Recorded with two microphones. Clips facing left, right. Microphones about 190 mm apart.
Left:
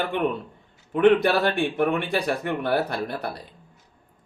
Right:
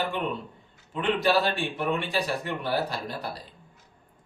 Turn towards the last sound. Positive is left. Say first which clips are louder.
# left 4 dB
turn(degrees=60)  # may be behind; listen again after turning